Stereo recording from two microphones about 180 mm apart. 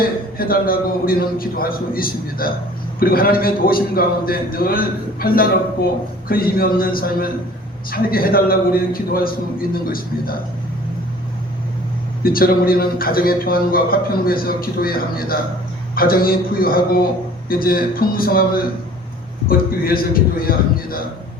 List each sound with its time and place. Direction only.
0.3 s a man's voice: 55° left (ahead or behind)
12.2 s a man's voice: 55° left (ahead or behind)